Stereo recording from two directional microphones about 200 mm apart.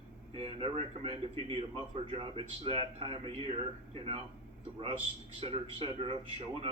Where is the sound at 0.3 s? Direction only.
30° right (ahead or behind).